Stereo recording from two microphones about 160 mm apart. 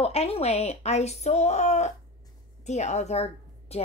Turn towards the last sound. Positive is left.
turn(degrees=40)  # may be behind; listen again after turning